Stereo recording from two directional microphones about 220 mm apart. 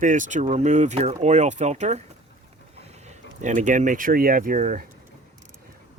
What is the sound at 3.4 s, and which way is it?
Speech, 35° right (ahead or behind).